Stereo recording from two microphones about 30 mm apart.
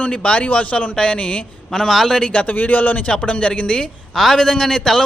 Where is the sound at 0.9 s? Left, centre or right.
Left.